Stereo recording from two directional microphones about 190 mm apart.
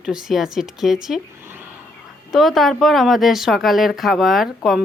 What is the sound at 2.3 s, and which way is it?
Speech, centre (ahead or behind).